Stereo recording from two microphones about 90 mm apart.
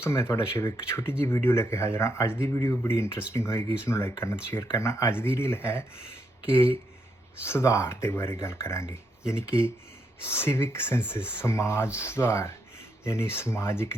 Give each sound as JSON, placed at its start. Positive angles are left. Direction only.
{"t": 0.0, "sound": "speech", "side_deg": 30}